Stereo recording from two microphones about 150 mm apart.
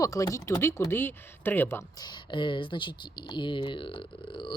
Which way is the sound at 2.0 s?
30° left (ahead or behind).